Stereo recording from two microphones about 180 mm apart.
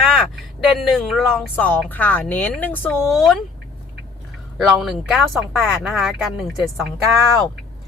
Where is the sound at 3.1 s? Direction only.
Centre (ahead or behind).